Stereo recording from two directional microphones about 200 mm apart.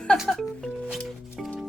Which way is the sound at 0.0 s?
5° left (ahead or behind).